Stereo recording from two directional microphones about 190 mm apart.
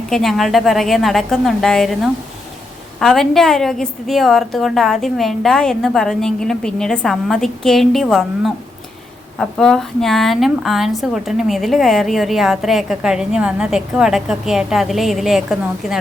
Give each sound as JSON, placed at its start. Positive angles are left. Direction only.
{"t": 0.1, "sound": "a woman's voice", "side_deg": 0}